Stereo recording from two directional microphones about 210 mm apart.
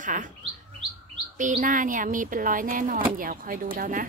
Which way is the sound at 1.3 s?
35° right (ahead or behind).